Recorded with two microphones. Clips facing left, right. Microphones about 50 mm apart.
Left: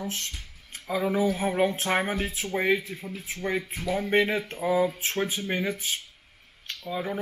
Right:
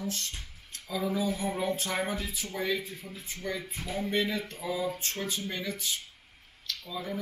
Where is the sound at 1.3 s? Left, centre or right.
Left.